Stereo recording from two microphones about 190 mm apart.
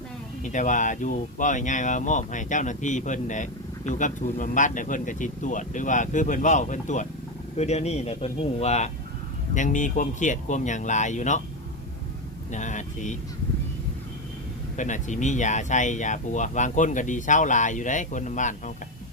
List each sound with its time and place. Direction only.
0.4 s speech: 40° left (ahead or behind)
12.5 s speech: 40° left (ahead or behind)
14.8 s speech: 40° left (ahead or behind)